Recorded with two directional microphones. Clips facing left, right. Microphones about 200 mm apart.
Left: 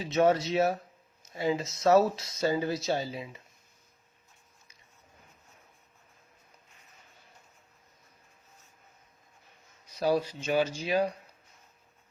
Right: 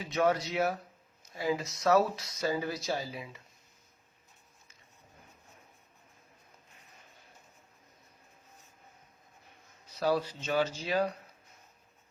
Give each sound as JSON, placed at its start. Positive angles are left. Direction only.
{"t": 0.0, "sound": "speech", "side_deg": 25}
{"t": 9.8, "sound": "speech", "side_deg": 15}